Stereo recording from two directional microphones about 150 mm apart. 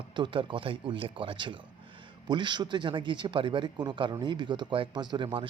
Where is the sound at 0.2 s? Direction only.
30° right (ahead or behind).